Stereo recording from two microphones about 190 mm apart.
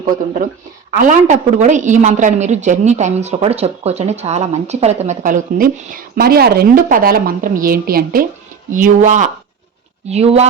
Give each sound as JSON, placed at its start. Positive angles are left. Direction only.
{"t": 1.0, "sound": "a woman's voice", "side_deg": -40}